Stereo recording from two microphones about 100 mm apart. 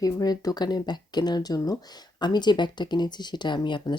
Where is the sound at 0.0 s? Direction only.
40° left (ahead or behind).